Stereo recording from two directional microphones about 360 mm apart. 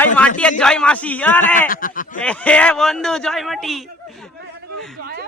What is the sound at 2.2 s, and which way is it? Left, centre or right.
A man's voice, centre.